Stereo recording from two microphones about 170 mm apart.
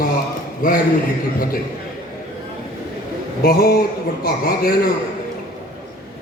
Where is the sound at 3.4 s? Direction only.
65° left (ahead or behind).